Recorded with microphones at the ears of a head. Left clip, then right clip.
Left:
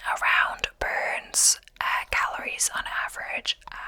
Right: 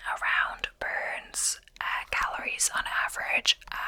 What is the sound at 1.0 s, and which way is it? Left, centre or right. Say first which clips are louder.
Whispering: left 8 dB; left.